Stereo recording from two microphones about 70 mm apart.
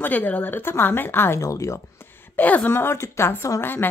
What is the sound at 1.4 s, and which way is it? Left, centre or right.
Speech, left.